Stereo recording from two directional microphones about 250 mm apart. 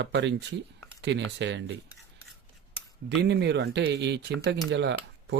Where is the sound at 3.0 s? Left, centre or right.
Right.